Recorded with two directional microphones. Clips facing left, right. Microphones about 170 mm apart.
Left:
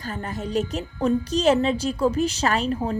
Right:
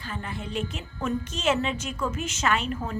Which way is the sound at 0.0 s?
40° left (ahead or behind).